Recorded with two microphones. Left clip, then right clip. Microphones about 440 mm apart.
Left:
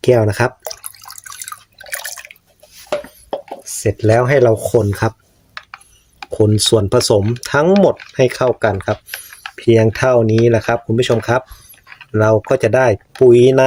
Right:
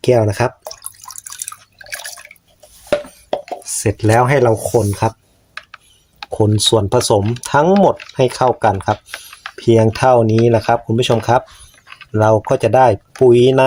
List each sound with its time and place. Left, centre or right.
0.0 s speech: left
1.5 s drip: left
3.6 s speech: left
6.3 s speech: left